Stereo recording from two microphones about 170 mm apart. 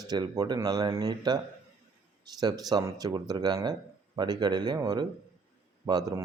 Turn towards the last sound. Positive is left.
turn(degrees=-20)  # may be behind; listen again after turning